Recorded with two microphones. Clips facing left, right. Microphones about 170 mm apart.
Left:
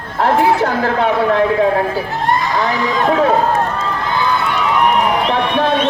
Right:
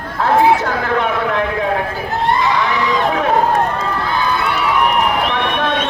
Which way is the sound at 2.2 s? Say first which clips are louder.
Right 2 dB; 45° left (ahead or behind).